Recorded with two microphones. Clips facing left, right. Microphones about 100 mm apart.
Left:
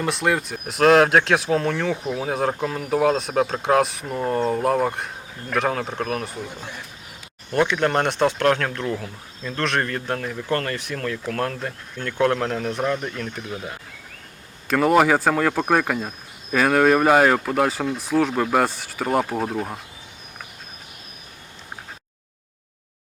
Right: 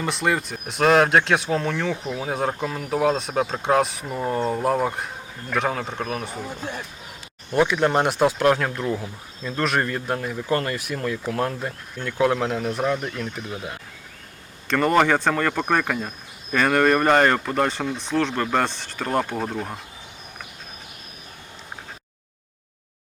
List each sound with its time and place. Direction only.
0.0 s speech: centre (ahead or behind)
7.5 s speech: 5° right (ahead or behind)